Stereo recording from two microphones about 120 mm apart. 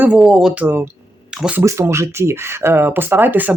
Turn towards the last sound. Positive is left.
turn(degrees=-15)  # may be behind; listen again after turning